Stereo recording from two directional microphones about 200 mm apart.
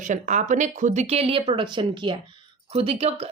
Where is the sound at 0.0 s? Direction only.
40° right (ahead or behind).